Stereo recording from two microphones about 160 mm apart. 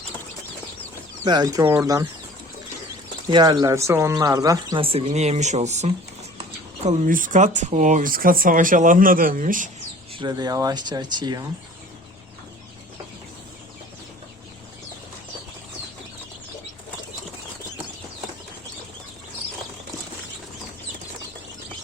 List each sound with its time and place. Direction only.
1.2 s speech: 25° right (ahead or behind)
3.2 s speech: 25° right (ahead or behind)
4.8 s speech: 35° right (ahead or behind)
6.8 s speech: 55° right (ahead or behind)
10.2 s speech: 25° right (ahead or behind)